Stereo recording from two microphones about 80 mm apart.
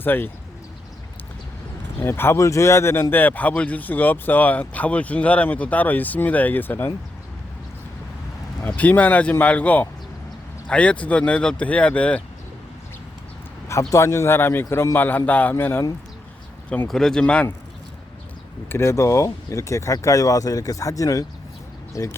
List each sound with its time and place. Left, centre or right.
0.0 s speech: left
2.0 s speech: left
8.6 s speech: left
13.7 s a man's voice: left
16.9 s speech: centre
18.7 s a man's voice: left